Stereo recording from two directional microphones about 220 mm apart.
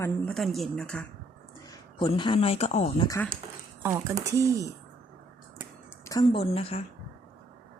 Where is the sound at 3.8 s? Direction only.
15° right (ahead or behind).